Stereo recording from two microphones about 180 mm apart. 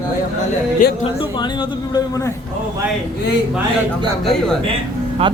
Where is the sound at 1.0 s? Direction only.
25° left (ahead or behind).